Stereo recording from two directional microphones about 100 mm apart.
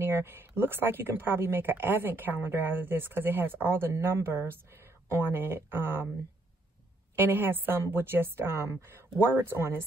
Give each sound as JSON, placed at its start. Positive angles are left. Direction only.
{"t": 0.0, "sound": "speech", "side_deg": -25}
{"t": 7.2, "sound": "speech", "side_deg": -20}